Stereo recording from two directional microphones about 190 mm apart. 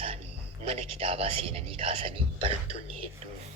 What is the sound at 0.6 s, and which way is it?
Speech, 30° right (ahead or behind).